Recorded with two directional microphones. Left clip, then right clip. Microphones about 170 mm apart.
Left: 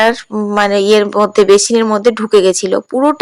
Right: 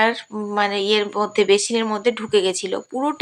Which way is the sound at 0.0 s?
40° left (ahead or behind).